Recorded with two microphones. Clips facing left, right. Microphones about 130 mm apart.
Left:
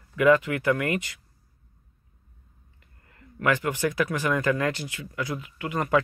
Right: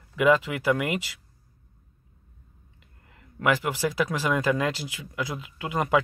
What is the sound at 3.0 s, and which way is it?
Speech, 15° right (ahead or behind).